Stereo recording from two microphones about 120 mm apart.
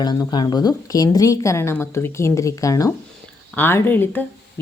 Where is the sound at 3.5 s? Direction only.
15° left (ahead or behind).